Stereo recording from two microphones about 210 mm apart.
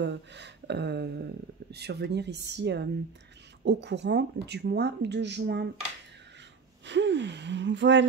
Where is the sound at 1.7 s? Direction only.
50° right (ahead or behind).